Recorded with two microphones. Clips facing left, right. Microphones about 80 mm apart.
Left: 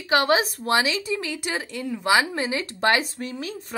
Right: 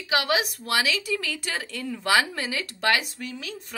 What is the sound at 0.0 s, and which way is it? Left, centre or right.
A woman's voice, left.